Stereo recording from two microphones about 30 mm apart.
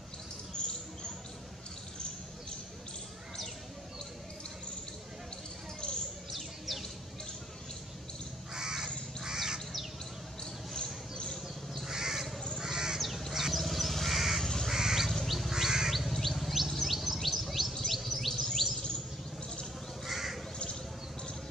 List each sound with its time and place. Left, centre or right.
0.6 s a sound: left
8.5 s crow: right
10.4 s a sound: left
11.9 s crow: centre
13.3 s vehicle: centre
13.6 s crow: centre
14.4 s crow: centre
14.7 s duck: centre
15.2 s goat: centre
15.5 s bird: centre
16.3 s bird: centre
17.8 s music: centre
18.3 s chirp tone: centre
20.1 s crow: centre